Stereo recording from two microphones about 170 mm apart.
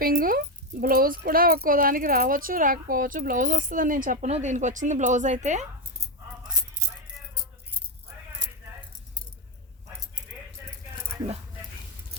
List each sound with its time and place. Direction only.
0.0 s speech: 60° right (ahead or behind)
4.3 s speech: 40° right (ahead or behind)